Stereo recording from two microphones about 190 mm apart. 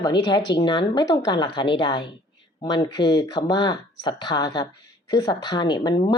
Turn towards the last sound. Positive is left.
turn(degrees=20)  # may be behind; listen again after turning